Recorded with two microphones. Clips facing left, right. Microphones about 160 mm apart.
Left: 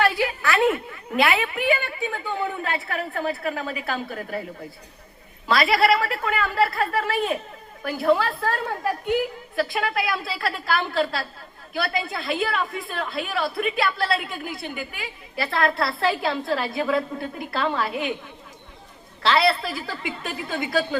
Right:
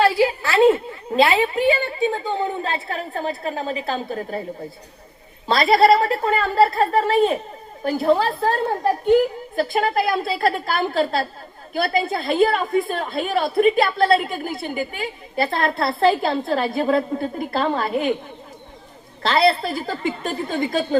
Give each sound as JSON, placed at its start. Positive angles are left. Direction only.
{"t": 0.0, "sound": "a sound", "side_deg": -25}
{"t": 5.5, "sound": "a woman's voice", "side_deg": -30}
{"t": 13.1, "sound": "a woman's voice", "side_deg": -50}
{"t": 19.2, "sound": "a woman's voice", "side_deg": -45}